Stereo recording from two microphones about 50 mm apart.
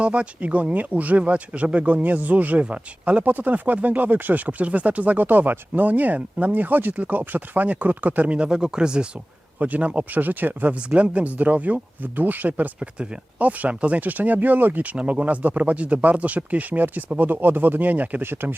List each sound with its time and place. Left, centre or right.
0.0 s speech: right
8.4 s speech: centre
9.6 s speech: right
10.8 s speech: right
18.2 s speech: right